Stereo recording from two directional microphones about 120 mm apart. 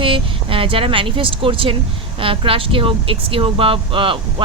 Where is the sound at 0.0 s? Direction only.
45° right (ahead or behind).